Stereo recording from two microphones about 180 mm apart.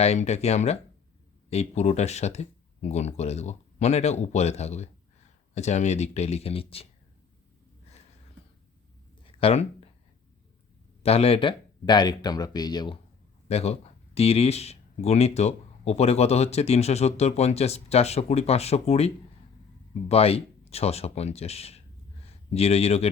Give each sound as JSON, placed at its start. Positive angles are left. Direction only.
{"t": 0.0, "sound": "speech", "side_deg": 35}
{"t": 9.2, "sound": "a sound", "side_deg": 35}
{"t": 11.0, "sound": "speech", "side_deg": 35}
{"t": 13.5, "sound": "speech", "side_deg": 35}